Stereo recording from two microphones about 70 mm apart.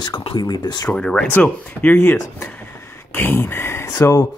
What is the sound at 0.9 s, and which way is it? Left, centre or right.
Speech, centre.